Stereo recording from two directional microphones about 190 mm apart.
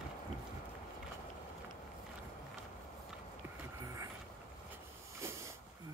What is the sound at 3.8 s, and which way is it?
Vehicle, 15° right (ahead or behind).